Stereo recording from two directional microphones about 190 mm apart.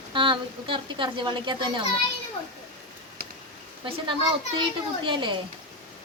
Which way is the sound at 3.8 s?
25° right (ahead or behind).